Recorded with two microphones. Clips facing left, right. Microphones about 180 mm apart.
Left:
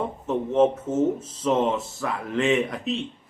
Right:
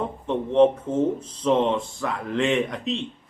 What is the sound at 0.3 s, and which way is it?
A man's voice, 5° left (ahead or behind).